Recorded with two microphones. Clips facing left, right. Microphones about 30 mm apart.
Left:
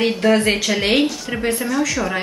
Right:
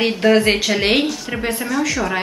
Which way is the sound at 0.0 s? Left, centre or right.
Centre.